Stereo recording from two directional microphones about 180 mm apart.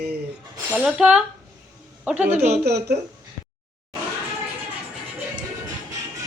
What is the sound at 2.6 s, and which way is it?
Speech, 65° right (ahead or behind).